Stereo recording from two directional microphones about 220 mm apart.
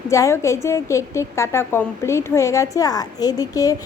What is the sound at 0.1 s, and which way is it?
A woman's voice, 15° left (ahead or behind).